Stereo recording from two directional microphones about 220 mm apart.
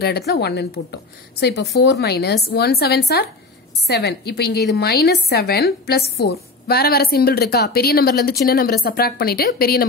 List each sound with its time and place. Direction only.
0.3 s a woman's voice: 50° left (ahead or behind)